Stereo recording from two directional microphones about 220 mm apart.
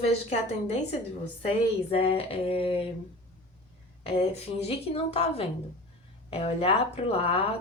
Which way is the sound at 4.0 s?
25° left (ahead or behind).